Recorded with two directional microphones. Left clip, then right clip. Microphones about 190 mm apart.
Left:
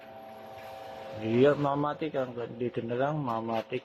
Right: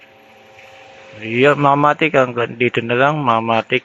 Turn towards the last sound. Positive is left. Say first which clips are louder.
# right 16 dB
turn(degrees=-25)  # may be behind; listen again after turning